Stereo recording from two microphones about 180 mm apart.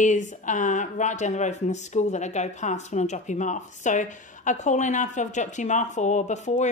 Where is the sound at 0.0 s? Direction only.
45° left (ahead or behind).